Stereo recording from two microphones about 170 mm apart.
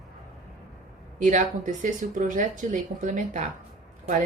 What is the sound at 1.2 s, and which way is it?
Speech, 45° right (ahead or behind).